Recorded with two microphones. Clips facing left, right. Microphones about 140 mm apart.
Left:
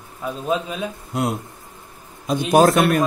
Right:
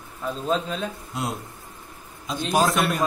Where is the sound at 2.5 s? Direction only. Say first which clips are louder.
Left 7 dB; 55° left (ahead or behind).